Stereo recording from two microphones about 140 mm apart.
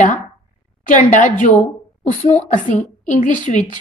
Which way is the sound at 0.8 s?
65° left (ahead or behind).